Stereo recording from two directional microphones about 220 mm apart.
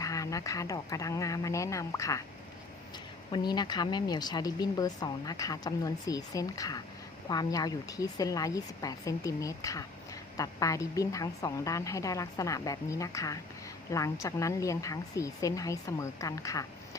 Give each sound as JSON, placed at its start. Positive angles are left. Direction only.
{"t": 0.0, "sound": "speech", "side_deg": 15}
{"t": 3.3, "sound": "speech", "side_deg": 20}